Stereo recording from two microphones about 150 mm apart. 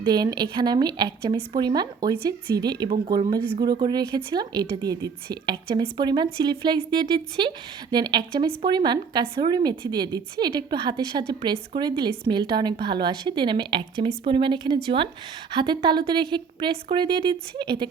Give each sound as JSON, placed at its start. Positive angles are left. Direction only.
{"t": 0.0, "sound": "a woman's voice", "side_deg": -25}